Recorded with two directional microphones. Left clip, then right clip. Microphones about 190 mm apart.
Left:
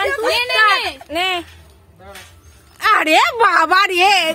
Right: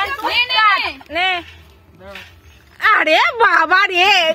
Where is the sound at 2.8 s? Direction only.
25° left (ahead or behind).